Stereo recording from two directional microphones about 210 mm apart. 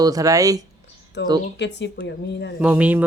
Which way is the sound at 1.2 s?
55° left (ahead or behind).